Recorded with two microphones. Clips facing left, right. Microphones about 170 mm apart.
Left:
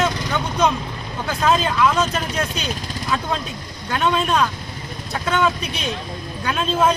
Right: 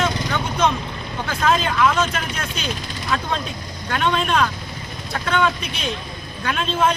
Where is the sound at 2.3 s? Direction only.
40° left (ahead or behind).